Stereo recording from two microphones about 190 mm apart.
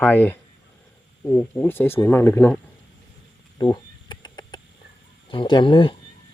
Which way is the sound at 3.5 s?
20° left (ahead or behind).